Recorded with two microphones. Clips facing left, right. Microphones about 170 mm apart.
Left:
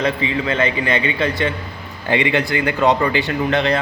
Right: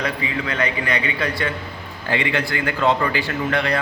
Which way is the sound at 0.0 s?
25° left (ahead or behind).